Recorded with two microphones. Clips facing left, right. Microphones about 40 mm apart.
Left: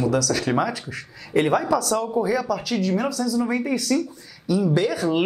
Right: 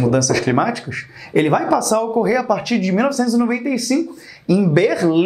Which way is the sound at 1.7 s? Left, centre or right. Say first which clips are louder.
Right 6 dB; right.